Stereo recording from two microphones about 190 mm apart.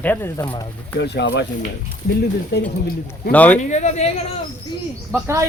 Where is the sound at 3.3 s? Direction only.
10° left (ahead or behind).